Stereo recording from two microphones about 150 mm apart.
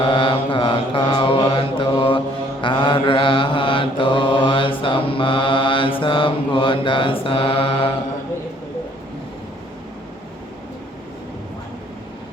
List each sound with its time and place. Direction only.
0.0 s mantra: 35° left (ahead or behind)